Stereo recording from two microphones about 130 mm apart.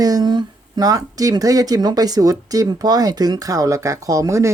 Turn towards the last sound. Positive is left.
turn(degrees=-25)  # may be behind; listen again after turning